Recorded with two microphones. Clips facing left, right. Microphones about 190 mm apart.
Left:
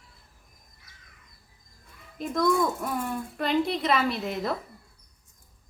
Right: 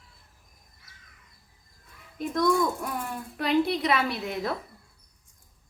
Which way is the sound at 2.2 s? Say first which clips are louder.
Even; centre (ahead or behind).